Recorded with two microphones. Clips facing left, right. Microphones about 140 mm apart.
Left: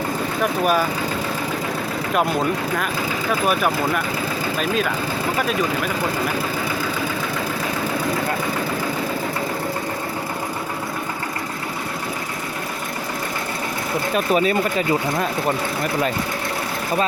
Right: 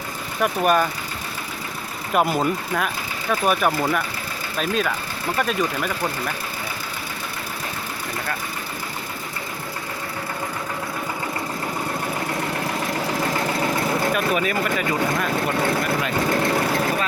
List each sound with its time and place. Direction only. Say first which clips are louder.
0.6 s speech: right 1 dB; centre (ahead or behind)
3.4 s speech: right 1 dB; centre (ahead or behind)
14.3 s speech: left 4 dB; 30° left (ahead or behind)